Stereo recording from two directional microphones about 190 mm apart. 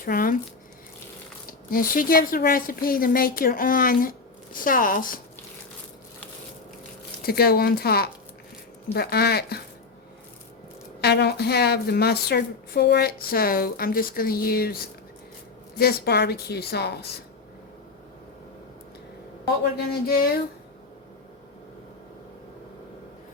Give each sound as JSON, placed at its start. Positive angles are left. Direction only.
{"t": 0.0, "sound": "a woman's voice", "side_deg": 50}
{"t": 1.5, "sound": "a woman's voice", "side_deg": 50}
{"t": 7.2, "sound": "a woman's voice", "side_deg": 55}
{"t": 11.0, "sound": "a woman's voice", "side_deg": 60}
{"t": 15.8, "sound": "a woman's voice", "side_deg": 55}
{"t": 19.7, "sound": "a woman's voice", "side_deg": 55}